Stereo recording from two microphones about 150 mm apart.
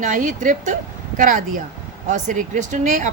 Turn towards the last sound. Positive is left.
turn(degrees=-60)  # may be behind; listen again after turning